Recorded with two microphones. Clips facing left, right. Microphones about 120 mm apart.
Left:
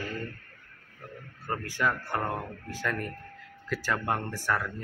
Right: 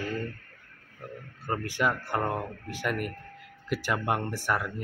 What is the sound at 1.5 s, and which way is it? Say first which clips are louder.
Speech: right 2 dB; 20° right (ahead or behind).